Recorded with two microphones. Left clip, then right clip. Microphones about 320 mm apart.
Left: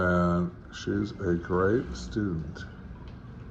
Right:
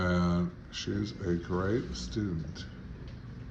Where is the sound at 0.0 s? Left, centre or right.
Centre.